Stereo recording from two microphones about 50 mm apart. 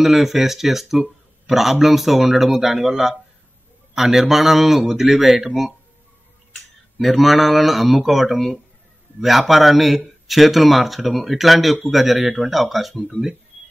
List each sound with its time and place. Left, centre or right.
0.0 s speech: centre
7.0 s speech: centre